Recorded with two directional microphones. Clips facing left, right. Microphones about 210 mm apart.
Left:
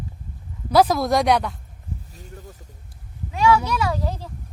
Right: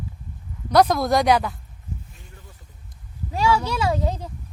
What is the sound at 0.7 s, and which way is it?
Speech, centre (ahead or behind).